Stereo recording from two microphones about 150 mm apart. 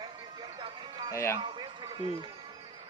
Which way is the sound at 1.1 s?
20° left (ahead or behind).